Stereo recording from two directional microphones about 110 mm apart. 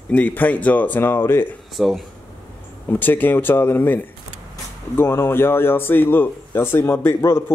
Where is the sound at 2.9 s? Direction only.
15° left (ahead or behind).